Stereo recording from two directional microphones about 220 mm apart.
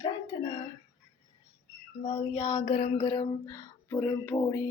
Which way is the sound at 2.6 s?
30° left (ahead or behind).